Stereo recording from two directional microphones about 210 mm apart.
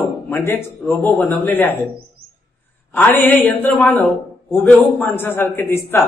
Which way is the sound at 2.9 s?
10° left (ahead or behind).